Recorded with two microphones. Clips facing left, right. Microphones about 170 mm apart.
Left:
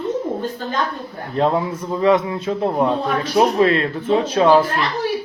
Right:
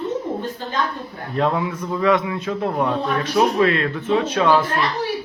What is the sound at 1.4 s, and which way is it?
A man's voice, 30° left (ahead or behind).